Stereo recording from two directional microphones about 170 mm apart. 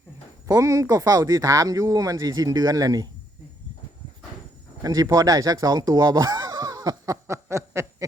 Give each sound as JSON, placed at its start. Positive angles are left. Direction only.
{"t": 0.4, "sound": "speech", "side_deg": -20}
{"t": 4.8, "sound": "speech", "side_deg": -20}